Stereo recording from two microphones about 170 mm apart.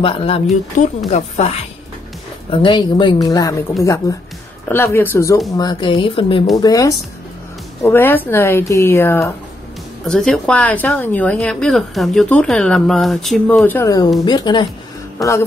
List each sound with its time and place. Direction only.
0.0 s speech: 35° left (ahead or behind)
2.5 s a woman's voice: 30° left (ahead or behind)
5.6 s a woman's voice: 25° left (ahead or behind)
6.5 s a woman's voice: 20° left (ahead or behind)
10.0 s a woman's voice: centre (ahead or behind)
13.7 s a woman's voice: 15° left (ahead or behind)